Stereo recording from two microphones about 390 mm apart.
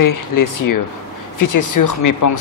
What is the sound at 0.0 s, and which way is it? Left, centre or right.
Speech, left.